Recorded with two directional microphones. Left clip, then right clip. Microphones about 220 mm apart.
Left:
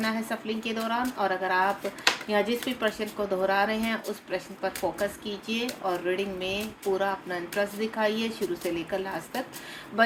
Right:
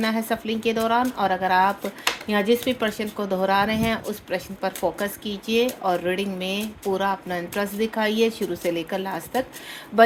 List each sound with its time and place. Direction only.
0.0 s speech: 50° right (ahead or behind)